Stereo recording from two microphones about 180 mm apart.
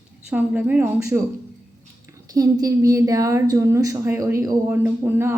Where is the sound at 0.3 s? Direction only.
5° right (ahead or behind).